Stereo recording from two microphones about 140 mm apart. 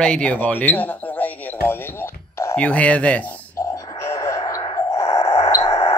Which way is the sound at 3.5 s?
20° left (ahead or behind).